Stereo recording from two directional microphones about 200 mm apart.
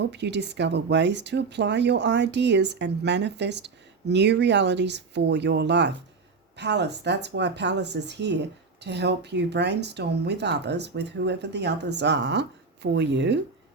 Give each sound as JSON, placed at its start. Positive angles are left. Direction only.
{"t": 0.0, "sound": "speech", "side_deg": -60}